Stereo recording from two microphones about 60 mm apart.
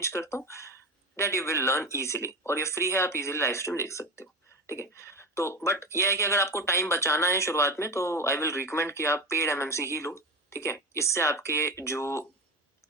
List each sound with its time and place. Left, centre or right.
0.0 s speech: left